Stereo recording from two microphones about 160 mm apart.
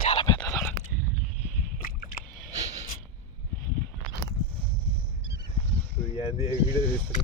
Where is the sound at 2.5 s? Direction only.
25° right (ahead or behind).